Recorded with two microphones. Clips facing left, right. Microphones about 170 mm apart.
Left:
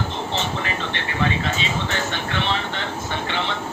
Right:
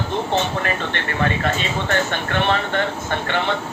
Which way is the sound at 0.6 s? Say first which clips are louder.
Right 3 dB; 55° right (ahead or behind).